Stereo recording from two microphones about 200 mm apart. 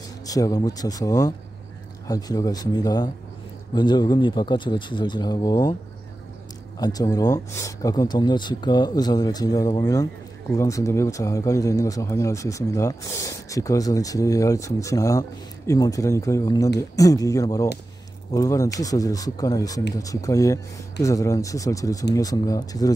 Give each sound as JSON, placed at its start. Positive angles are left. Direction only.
{"t": 0.3, "sound": "speech", "side_deg": 15}
{"t": 6.8, "sound": "speech", "side_deg": 20}